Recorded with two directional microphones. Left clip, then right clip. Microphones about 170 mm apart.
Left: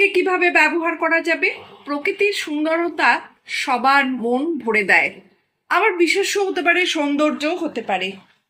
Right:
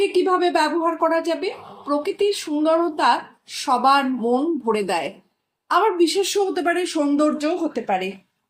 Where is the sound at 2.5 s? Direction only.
20° left (ahead or behind).